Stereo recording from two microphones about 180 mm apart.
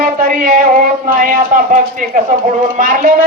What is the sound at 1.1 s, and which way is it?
A man's voice, 50° right (ahead or behind).